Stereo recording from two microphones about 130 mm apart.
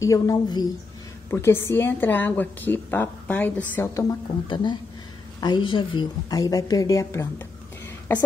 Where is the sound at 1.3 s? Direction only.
20° left (ahead or behind).